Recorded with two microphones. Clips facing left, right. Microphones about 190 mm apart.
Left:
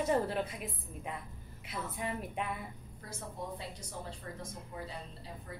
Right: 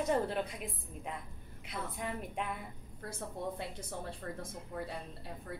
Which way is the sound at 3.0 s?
55° right (ahead or behind).